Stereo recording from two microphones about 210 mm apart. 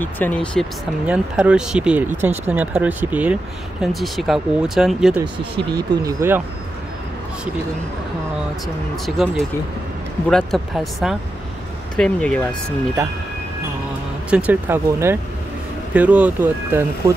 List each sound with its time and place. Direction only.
0.0 s speech: 10° left (ahead or behind)
1.0 s speech: 5° right (ahead or behind)
5.6 s speech: 20° right (ahead or behind)
9.0 s speech: centre (ahead or behind)
14.3 s speech: 5° right (ahead or behind)